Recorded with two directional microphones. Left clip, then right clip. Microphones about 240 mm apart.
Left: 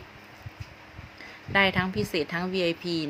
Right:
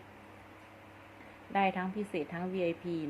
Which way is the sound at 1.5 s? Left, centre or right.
Left.